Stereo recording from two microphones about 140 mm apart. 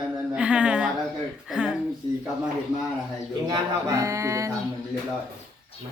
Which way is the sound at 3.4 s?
25° right (ahead or behind).